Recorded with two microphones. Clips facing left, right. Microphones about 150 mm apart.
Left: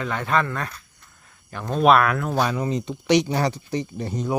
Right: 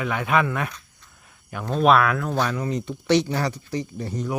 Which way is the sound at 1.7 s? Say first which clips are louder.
Left 1 dB; centre (ahead or behind).